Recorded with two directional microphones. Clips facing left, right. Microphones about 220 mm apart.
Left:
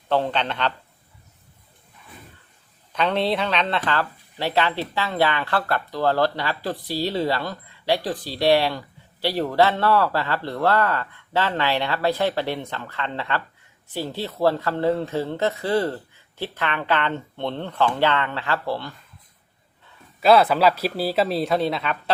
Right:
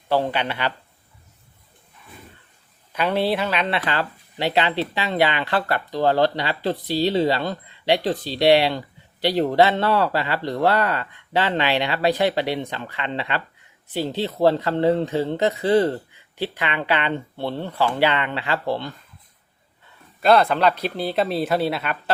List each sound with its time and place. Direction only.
0.1 s speech: 10° right (ahead or behind)
2.9 s speech: 10° right (ahead or behind)
20.2 s speech: 5° left (ahead or behind)